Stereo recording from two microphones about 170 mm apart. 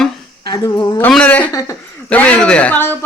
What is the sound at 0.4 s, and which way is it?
Speech, 20° left (ahead or behind).